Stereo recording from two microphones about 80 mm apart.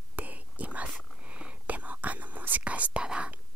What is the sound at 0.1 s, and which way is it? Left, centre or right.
Whispering, centre.